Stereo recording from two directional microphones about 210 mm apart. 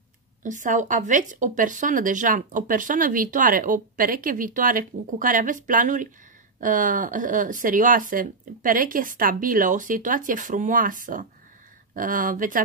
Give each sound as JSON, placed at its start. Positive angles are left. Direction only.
{"t": 0.4, "sound": "speech", "side_deg": -40}